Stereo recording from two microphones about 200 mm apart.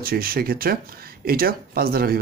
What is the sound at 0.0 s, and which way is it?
Speech, 45° right (ahead or behind).